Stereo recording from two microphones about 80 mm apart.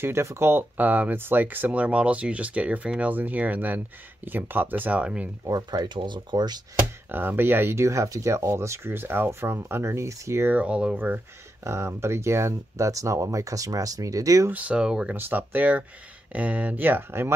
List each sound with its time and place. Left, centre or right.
0.0 s speech: right; by 5.3 s centre
5.4 s speech: right
5.7 s speech: right
7.1 s speech: right
10.5 s speech: centre
11.6 s speech: right
14.5 s speech: centre
15.1 s speech: right